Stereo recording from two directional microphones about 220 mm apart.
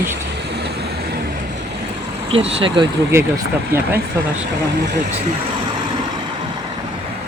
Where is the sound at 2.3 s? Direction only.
25° right (ahead or behind).